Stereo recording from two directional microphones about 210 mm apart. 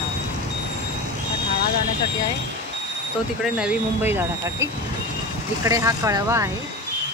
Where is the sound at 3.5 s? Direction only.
5° right (ahead or behind).